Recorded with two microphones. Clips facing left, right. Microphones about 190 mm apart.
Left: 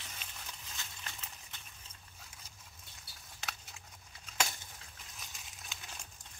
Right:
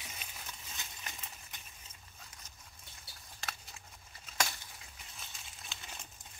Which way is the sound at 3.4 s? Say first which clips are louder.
Even; centre (ahead or behind).